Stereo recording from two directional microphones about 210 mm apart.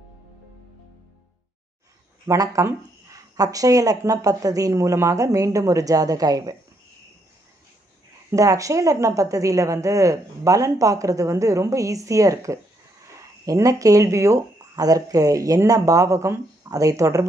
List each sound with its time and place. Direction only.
2.2 s speech: 15° right (ahead or behind)
8.3 s speech: 15° right (ahead or behind)